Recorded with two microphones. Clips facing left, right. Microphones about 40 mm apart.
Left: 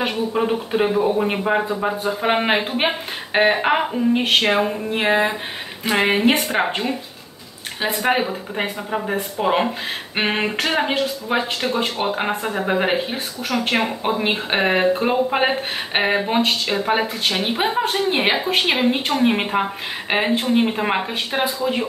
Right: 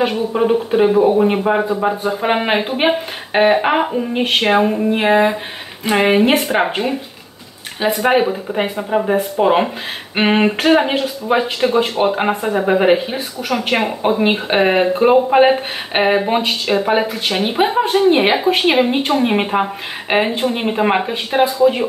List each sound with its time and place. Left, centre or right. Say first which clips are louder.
0.0 s speech: right 5 dB; centre
7.8 s speech: right 5 dB; centre
11.6 s speech: right 7 dB; centre
12.1 s speech: right 5 dB; centre